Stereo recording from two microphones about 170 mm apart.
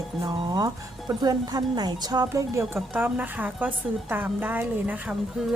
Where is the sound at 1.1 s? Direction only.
25° right (ahead or behind); by 5.5 s 5° right (ahead or behind).